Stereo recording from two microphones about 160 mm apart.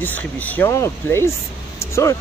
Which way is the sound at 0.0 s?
10° left (ahead or behind).